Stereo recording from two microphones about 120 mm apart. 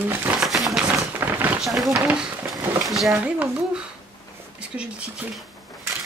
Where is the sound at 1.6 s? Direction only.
Centre (ahead or behind).